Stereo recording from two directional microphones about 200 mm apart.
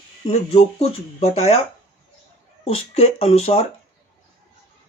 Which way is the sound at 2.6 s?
30° left (ahead or behind).